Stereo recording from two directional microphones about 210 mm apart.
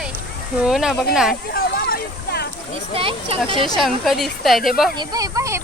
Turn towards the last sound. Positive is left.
turn(degrees=-15)  # may be behind; listen again after turning